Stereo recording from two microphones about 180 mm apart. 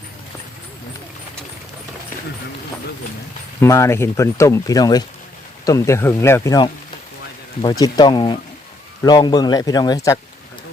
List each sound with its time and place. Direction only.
3.6 s a man's voice: 15° left (ahead or behind)